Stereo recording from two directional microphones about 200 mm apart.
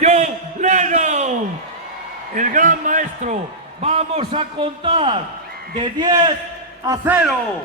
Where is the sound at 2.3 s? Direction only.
40° right (ahead or behind); by 7.1 s 15° right (ahead or behind).